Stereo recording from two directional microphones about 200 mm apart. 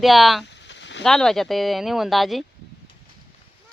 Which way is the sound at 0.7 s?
65° left (ahead or behind).